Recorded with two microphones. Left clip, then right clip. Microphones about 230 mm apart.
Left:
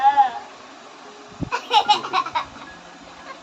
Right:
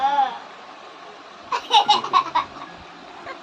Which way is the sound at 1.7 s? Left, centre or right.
Centre.